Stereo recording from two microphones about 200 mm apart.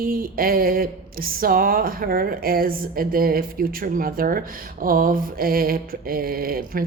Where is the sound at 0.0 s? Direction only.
45° right (ahead or behind).